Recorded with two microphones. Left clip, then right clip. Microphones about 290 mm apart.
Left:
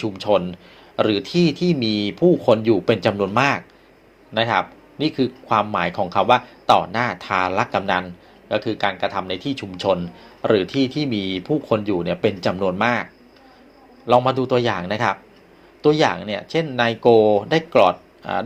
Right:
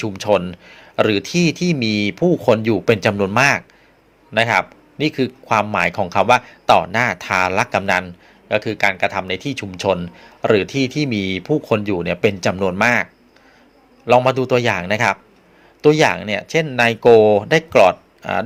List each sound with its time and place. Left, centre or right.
0.0 s speech: right
14.1 s speech: right